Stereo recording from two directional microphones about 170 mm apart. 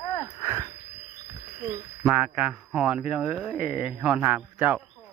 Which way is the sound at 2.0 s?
5° right (ahead or behind).